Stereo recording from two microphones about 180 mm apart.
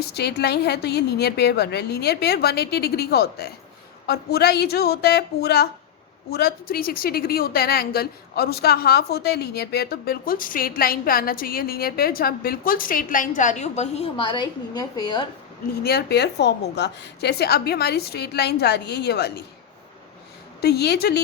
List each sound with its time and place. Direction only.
0.0 s speech: 65° left (ahead or behind); by 15.3 s 25° left (ahead or behind)
15.8 s a woman's voice: 65° left (ahead or behind)
20.6 s speech: 65° left (ahead or behind)